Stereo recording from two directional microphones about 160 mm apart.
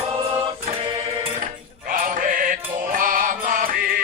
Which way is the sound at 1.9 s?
55° right (ahead or behind).